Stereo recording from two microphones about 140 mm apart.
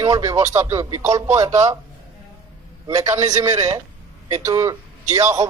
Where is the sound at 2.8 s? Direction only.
25° right (ahead or behind).